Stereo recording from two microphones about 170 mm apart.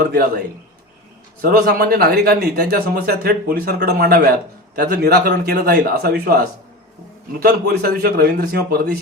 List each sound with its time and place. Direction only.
0.0 s speech: 60° right (ahead or behind)
1.4 s a man's voice: 60° right (ahead or behind)